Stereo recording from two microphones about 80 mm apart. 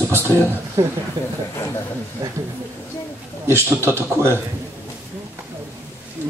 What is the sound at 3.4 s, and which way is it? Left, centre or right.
Speech, right.